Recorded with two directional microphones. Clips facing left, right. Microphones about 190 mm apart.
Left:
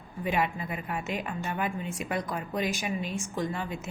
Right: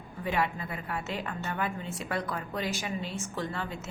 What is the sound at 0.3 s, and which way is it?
A woman's voice, 15° left (ahead or behind).